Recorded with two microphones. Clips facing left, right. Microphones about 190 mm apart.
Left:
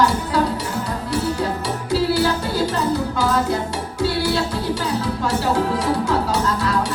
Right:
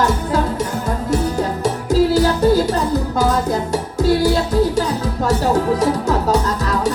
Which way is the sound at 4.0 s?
45° right (ahead or behind).